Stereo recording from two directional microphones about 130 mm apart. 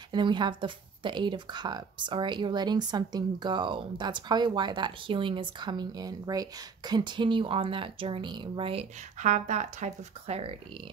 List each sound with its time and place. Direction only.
0.1 s speech: 35° right (ahead or behind)
9.2 s speech: 70° right (ahead or behind); by 10.5 s 50° right (ahead or behind)